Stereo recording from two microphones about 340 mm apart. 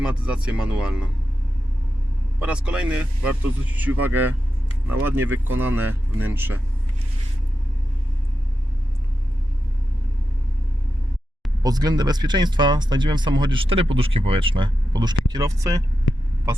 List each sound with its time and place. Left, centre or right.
0.0 s speech: centre
2.4 s speech: centre
11.6 s speech: centre
16.1 s hum: left